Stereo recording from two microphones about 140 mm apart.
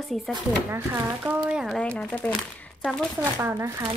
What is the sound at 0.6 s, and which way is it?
Speech, 15° right (ahead or behind).